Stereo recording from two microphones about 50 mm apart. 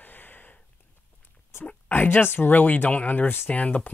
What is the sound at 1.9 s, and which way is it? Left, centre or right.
Speech, left.